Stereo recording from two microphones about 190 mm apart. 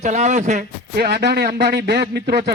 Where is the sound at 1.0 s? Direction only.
60° right (ahead or behind).